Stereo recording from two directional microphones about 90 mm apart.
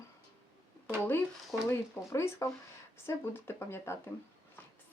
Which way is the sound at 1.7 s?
30° left (ahead or behind).